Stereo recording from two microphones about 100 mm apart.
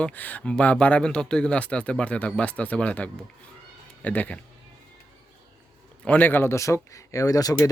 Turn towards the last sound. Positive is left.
turn(degrees=35)  # may be behind; listen again after turning